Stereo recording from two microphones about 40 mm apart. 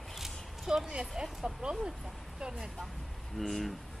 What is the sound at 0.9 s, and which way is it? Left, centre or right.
Speech, right.